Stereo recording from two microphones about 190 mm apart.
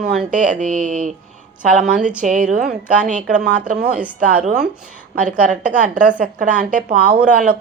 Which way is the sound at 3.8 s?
5° right (ahead or behind).